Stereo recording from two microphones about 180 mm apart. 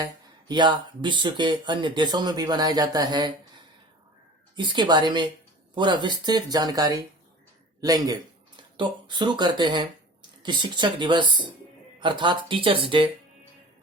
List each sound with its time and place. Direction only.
0.0 s speech: 25° right (ahead or behind)
4.5 s speech: 25° right (ahead or behind)